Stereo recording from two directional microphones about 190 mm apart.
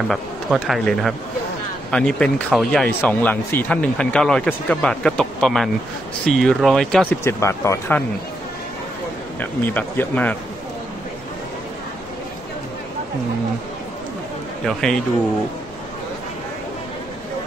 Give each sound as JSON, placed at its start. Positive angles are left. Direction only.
{"t": 0.1, "sound": "speech", "side_deg": 0}
{"t": 9.4, "sound": "speech", "side_deg": 10}
{"t": 14.7, "sound": "speech", "side_deg": 5}